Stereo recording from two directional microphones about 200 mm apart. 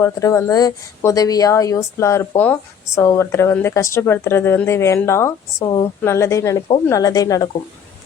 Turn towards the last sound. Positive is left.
turn(degrees=15)  # may be behind; listen again after turning